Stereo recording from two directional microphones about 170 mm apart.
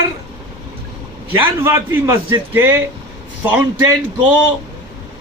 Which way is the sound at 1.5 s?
15° right (ahead or behind).